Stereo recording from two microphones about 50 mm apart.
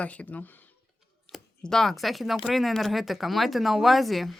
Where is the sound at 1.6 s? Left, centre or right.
Centre.